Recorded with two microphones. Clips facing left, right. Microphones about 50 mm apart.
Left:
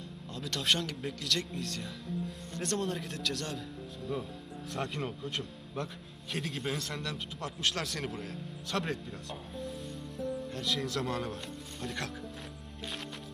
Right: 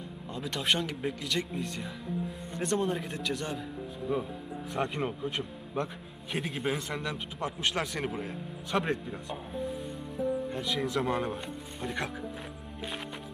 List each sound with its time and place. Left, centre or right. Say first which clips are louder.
0.3 s speech: right 2 dB; centre